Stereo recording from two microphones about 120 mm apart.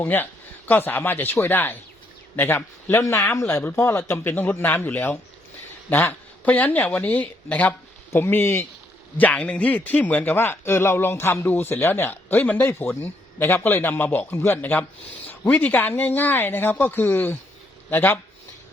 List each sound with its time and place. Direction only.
0.0 s a man's voice: 15° left (ahead or behind)